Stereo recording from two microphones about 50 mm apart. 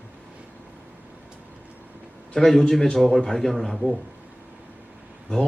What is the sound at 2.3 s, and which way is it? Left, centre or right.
A man's voice, centre.